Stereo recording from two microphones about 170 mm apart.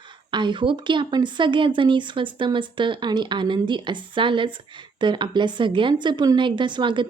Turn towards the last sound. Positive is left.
turn(degrees=-30)  # may be behind; listen again after turning